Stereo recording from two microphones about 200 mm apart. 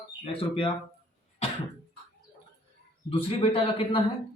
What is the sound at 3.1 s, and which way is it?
Speech, 30° left (ahead or behind).